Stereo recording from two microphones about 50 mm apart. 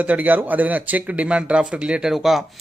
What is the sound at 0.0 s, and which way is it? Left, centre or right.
Speech, right.